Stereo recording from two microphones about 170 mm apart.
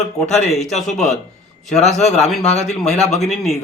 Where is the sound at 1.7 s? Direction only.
40° left (ahead or behind).